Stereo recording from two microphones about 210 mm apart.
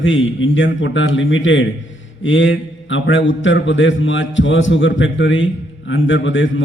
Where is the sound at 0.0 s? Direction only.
65° left (ahead or behind).